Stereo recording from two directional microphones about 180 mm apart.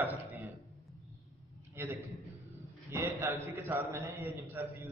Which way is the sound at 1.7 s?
15° right (ahead or behind).